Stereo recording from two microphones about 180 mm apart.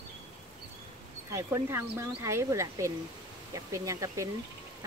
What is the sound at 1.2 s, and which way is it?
Speech, 15° right (ahead or behind).